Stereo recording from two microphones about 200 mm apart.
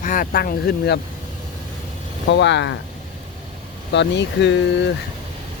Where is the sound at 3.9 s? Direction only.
60° left (ahead or behind).